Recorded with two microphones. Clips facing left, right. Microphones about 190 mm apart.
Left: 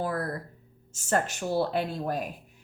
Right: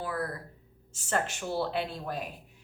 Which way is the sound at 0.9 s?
45° left (ahead or behind).